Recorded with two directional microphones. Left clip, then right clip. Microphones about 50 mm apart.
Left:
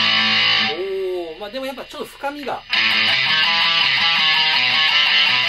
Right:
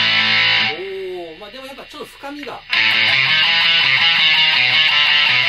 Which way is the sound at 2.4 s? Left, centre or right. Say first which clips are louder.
Right 3 dB; right.